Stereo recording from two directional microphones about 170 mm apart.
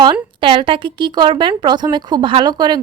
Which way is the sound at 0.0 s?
30° right (ahead or behind).